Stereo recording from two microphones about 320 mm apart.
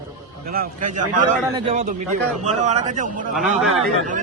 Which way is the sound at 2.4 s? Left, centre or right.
Right.